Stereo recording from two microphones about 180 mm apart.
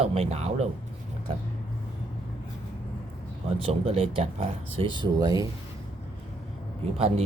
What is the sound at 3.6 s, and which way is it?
Speech, 30° right (ahead or behind).